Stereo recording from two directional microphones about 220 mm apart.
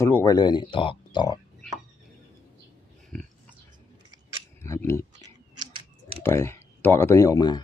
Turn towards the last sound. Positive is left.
turn(degrees=15)  # may be behind; listen again after turning